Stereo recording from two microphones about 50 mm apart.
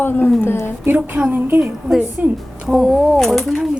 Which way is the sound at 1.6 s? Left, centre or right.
Centre.